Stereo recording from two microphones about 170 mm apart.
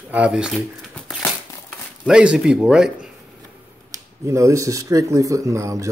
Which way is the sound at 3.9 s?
20° right (ahead or behind).